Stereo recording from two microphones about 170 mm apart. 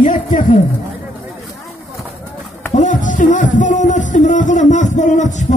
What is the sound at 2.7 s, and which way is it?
Music, 50° left (ahead or behind).